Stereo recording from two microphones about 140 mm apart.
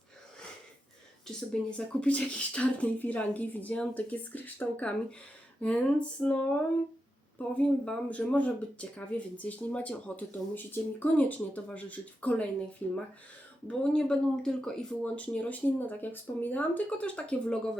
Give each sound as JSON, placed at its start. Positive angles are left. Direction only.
{"t": 1.7, "sound": "speech", "side_deg": 10}
{"t": 13.7, "sound": "speech", "side_deg": 5}